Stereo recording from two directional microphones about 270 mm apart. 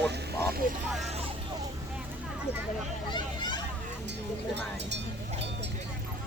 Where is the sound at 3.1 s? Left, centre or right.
Centre.